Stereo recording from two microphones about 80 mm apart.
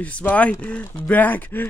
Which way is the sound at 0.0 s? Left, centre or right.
Centre.